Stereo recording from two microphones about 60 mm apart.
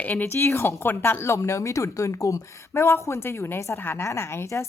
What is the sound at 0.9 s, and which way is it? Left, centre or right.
Speech, left.